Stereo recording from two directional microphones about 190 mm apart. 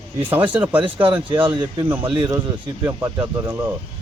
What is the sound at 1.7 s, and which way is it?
Speech, 25° right (ahead or behind).